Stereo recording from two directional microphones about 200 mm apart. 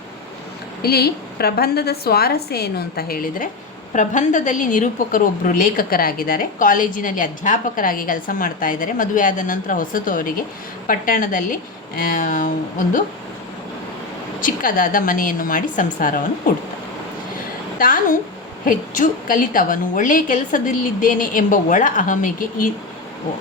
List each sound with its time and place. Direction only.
0.8 s a woman's voice: 50° left (ahead or behind)
14.4 s a woman's voice: 45° left (ahead or behind)
17.7 s a woman's voice: 45° left (ahead or behind)